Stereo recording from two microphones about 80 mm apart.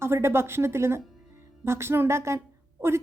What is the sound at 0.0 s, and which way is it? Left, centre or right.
A woman's voice, right.